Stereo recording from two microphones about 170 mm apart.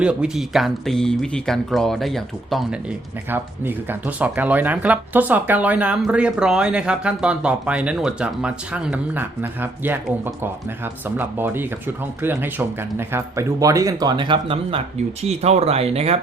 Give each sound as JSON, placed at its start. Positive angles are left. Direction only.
{"t": 0.0, "sound": "speech", "side_deg": -5}
{"t": 3.2, "sound": "speech", "side_deg": -10}